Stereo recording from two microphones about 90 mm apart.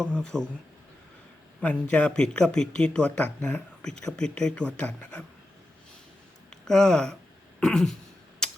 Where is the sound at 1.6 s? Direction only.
15° left (ahead or behind).